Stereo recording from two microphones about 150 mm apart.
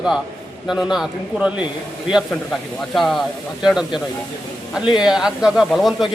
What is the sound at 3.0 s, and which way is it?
Speech, centre (ahead or behind).